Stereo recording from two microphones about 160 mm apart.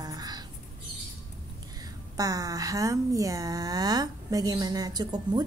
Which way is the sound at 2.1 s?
20° right (ahead or behind).